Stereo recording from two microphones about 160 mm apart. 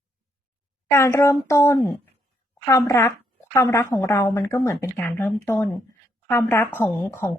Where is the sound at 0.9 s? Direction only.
15° left (ahead or behind).